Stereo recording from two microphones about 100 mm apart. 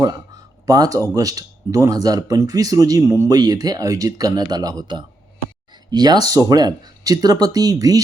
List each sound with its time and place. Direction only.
0.6 s speech: 40° right (ahead or behind)
3.3 s speech: 40° right (ahead or behind)